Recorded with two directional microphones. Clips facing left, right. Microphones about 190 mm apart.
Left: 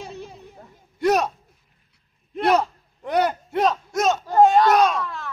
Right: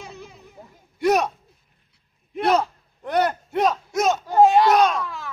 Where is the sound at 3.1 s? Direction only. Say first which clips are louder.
Even; 10° left (ahead or behind).